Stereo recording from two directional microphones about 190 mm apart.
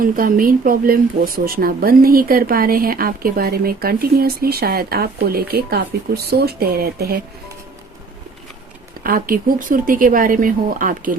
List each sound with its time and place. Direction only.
0.0 s speech: 45° right (ahead or behind)
9.0 s speech: 50° right (ahead or behind)